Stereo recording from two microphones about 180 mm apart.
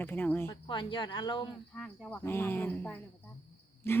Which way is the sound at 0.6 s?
25° left (ahead or behind).